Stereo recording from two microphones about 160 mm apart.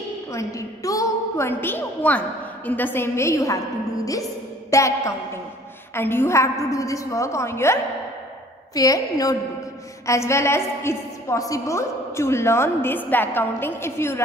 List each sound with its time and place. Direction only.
0.3 s a woman's voice: 20° left (ahead or behind)
4.6 s music: 20° left (ahead or behind)
5.9 s a woman's voice: 15° left (ahead or behind)